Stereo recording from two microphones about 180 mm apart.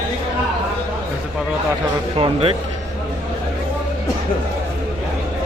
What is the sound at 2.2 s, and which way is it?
Speech, 30° right (ahead or behind).